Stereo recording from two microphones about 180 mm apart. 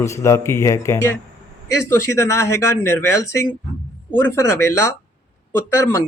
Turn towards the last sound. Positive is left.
turn(degrees=15)  # may be behind; listen again after turning